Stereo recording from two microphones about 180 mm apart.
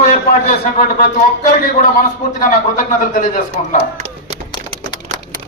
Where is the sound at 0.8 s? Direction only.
55° left (ahead or behind).